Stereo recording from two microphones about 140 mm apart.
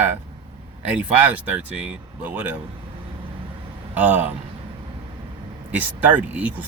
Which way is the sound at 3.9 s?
10° right (ahead or behind).